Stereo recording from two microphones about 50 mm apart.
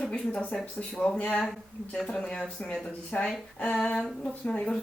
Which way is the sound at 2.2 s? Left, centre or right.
Centre.